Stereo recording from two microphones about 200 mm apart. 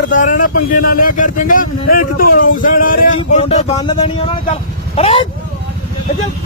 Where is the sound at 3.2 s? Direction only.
30° left (ahead or behind).